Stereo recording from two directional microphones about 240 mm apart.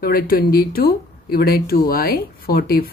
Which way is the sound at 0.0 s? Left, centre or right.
Left.